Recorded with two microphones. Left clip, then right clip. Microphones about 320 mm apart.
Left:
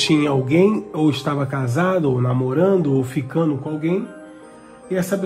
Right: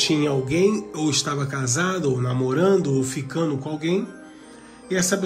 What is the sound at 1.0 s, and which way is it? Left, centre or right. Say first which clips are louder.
A man's voice: left 4 dB; centre.